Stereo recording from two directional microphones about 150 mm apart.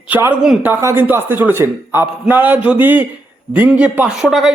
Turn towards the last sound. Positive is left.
turn(degrees=-5)  # may be behind; listen again after turning